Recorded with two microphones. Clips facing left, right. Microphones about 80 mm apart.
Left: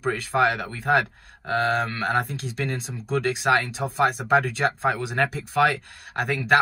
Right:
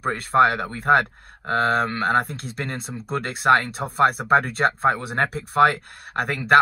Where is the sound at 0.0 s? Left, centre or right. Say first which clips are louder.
Right 4 dB; right.